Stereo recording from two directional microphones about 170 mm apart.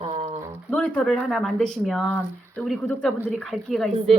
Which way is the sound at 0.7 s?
5° left (ahead or behind).